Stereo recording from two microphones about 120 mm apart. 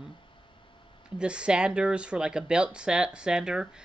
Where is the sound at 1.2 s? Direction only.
10° right (ahead or behind).